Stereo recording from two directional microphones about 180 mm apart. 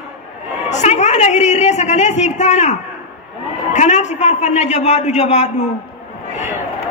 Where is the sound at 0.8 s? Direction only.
40° left (ahead or behind).